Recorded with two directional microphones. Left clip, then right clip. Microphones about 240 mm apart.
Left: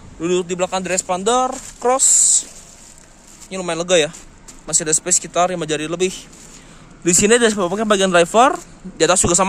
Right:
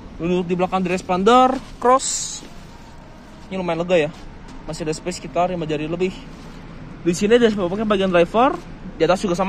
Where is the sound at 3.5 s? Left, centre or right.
Left.